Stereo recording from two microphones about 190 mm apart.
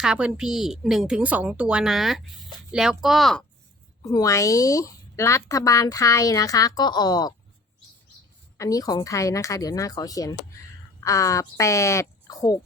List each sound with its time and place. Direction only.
0.0 s a woman's voice: 5° right (ahead or behind)
4.0 s a woman's voice: 20° left (ahead or behind)
8.5 s a woman's voice: 15° left (ahead or behind)